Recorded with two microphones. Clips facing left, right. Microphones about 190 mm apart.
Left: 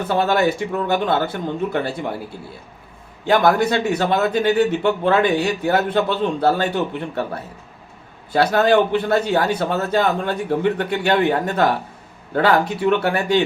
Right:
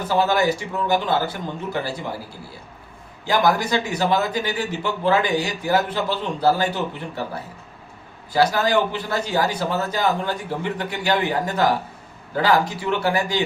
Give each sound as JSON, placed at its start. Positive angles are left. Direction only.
{"t": 0.1, "sound": "speech", "side_deg": 60}
{"t": 3.2, "sound": "speech", "side_deg": 60}
{"t": 8.3, "sound": "speech", "side_deg": 60}